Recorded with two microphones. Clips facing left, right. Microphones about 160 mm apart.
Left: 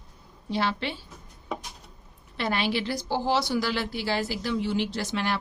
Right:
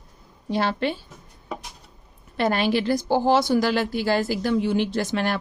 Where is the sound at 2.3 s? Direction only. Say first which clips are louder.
Right 6 dB; 45° right (ahead or behind).